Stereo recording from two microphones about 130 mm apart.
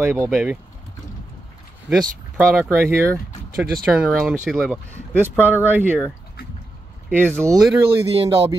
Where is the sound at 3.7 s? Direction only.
5° right (ahead or behind).